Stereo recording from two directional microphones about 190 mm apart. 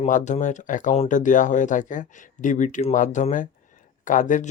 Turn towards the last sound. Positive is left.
turn(degrees=40)  # may be behind; listen again after turning